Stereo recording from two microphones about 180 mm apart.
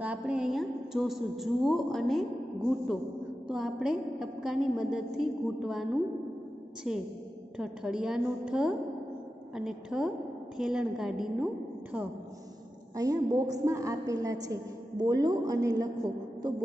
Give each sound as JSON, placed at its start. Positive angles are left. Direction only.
{"t": 0.0, "sound": "a woman's voice", "side_deg": -5}
{"t": 3.4, "sound": "a woman's voice", "side_deg": 0}
{"t": 12.9, "sound": "a woman's voice", "side_deg": -20}